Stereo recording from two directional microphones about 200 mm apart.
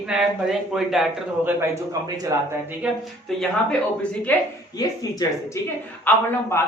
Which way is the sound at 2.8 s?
5° right (ahead or behind).